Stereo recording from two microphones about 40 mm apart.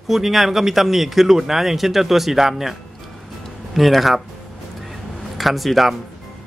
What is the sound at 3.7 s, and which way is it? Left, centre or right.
Speech, centre.